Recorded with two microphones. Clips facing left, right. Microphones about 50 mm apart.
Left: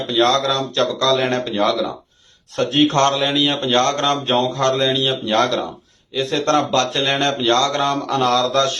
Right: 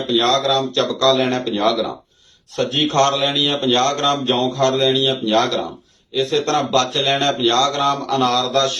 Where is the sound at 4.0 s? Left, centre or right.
Centre.